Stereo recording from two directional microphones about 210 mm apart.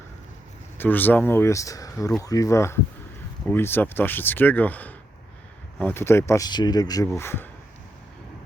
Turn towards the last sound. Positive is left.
turn(degrees=10)  # may be behind; listen again after turning